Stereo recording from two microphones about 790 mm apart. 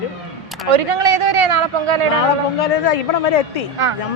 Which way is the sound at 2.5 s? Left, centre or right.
Left.